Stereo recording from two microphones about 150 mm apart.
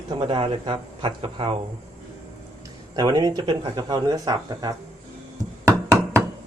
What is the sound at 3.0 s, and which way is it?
Speech, 25° right (ahead or behind).